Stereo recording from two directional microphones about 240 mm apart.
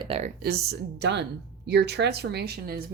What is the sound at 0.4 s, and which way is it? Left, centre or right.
Speech, right.